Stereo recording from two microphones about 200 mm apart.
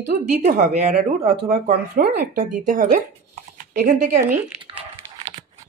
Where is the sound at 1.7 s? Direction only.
50° right (ahead or behind).